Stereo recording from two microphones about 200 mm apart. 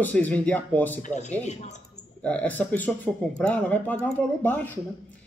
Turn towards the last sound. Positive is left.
turn(degrees=10)  # may be behind; listen again after turning